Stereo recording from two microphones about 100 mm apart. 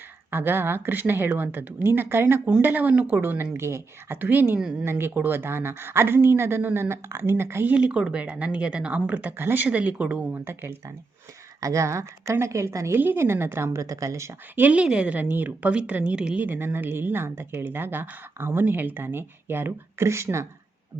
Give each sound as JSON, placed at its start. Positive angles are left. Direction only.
{"t": 0.3, "sound": "speech", "side_deg": -20}
{"t": 14.5, "sound": "a woman's voice", "side_deg": -15}